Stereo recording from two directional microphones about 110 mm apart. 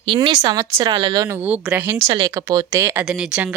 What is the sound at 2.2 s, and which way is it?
Speech, 30° right (ahead or behind).